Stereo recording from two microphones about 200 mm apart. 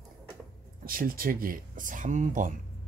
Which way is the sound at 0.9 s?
45° right (ahead or behind).